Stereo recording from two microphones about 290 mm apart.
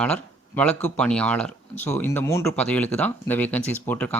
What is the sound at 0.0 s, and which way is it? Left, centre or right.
Speech, centre.